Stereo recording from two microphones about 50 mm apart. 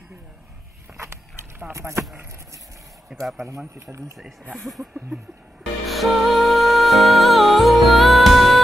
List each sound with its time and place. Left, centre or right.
0.9 s a sound: right
1.7 s speech: right
3.2 s speech: centre
3.4 s speech: right
4.5 s speech: centre
5.9 s music: centre